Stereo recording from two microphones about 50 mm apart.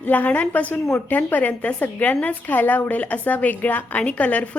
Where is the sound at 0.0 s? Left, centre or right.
Left.